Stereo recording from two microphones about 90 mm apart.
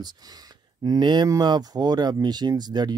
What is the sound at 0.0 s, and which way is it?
Speech, 50° right (ahead or behind).